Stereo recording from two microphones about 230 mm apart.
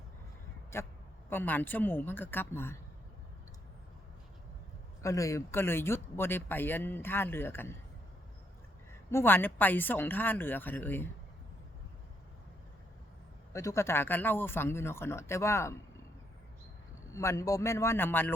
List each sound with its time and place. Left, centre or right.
0.7 s speech: centre
5.0 s speech: centre
9.0 s speech: centre
13.5 s speech: centre
17.1 s speech: centre